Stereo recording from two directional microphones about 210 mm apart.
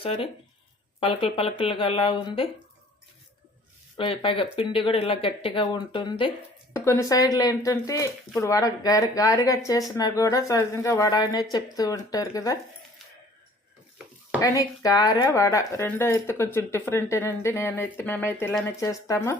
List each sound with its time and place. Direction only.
0.0 s speech: 25° left (ahead or behind)
3.9 s speech: 25° left (ahead or behind)
14.3 s speech: 15° left (ahead or behind)